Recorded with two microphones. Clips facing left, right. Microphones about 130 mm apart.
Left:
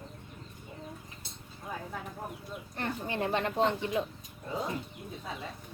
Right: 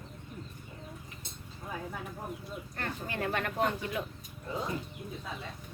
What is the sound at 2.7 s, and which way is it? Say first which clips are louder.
A woman's voice: left 4 dB; 20° left (ahead or behind).